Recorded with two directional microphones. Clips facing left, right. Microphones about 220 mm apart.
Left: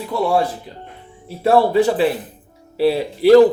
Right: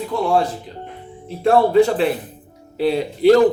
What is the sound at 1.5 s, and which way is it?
Speech, 5° left (ahead or behind).